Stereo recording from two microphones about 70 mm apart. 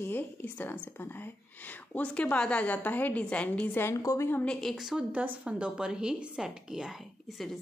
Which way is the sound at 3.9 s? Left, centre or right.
Left.